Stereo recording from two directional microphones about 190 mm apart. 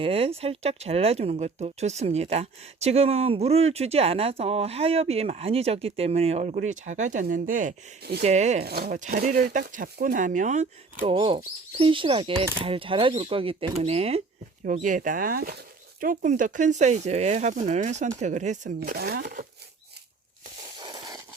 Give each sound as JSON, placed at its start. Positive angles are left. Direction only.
{"t": 0.0, "sound": "speech", "side_deg": -30}
{"t": 8.6, "sound": "speech", "side_deg": -50}
{"t": 11.1, "sound": "speech", "side_deg": -25}
{"t": 14.6, "sound": "speech", "side_deg": -45}
{"t": 18.8, "sound": "speech", "side_deg": -55}
{"t": 20.7, "sound": "a sound", "side_deg": -20}